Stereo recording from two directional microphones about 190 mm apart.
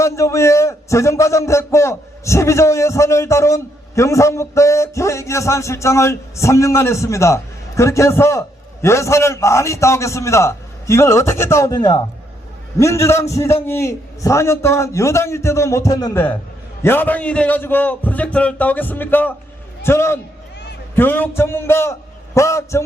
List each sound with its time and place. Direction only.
0.0 s a man's voice: 15° left (ahead or behind)